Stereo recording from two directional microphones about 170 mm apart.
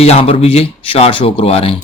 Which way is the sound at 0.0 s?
35° left (ahead or behind).